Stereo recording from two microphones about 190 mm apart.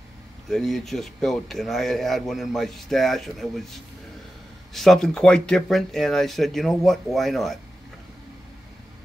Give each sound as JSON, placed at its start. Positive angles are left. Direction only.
{"t": 0.5, "sound": "a man's voice", "side_deg": 0}